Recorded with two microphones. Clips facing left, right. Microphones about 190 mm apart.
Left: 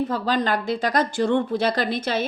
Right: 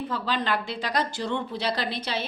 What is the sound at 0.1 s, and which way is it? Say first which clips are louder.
A woman's voice: left 5 dB; 45° left (ahead or behind).